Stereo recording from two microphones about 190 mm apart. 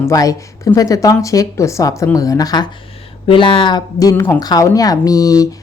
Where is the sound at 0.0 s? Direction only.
15° left (ahead or behind).